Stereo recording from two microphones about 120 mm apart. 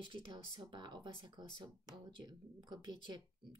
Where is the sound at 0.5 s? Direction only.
40° right (ahead or behind).